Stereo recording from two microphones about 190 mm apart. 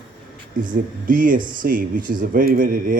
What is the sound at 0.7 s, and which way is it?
A man's voice, 45° right (ahead or behind).